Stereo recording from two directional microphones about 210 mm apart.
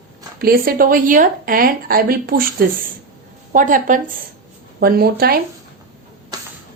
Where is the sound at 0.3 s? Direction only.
45° right (ahead or behind).